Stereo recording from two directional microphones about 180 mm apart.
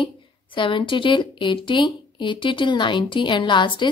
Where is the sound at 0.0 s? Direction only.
30° left (ahead or behind).